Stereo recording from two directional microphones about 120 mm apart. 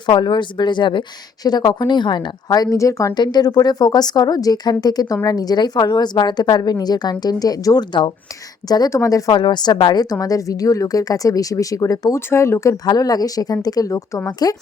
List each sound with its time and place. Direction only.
0.0 s a woman's voice: 40° left (ahead or behind)